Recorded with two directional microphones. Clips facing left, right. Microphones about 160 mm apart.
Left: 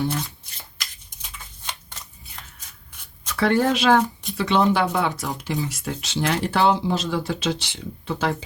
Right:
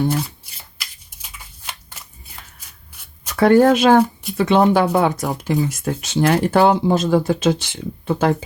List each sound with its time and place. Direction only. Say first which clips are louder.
0.5 s shuffling cards: even; 5° right (ahead or behind)
3.3 s speech: right 8 dB; 50° right (ahead or behind)